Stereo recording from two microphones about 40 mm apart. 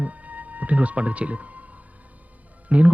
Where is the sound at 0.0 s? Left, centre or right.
Right.